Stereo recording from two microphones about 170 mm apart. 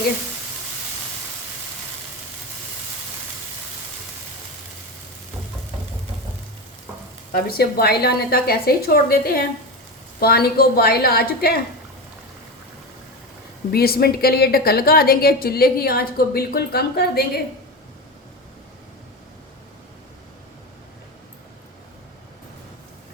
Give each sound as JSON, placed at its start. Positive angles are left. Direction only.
{"t": 7.3, "sound": "a woman's voice", "side_deg": 60}
{"t": 13.7, "sound": "a woman's voice", "side_deg": 65}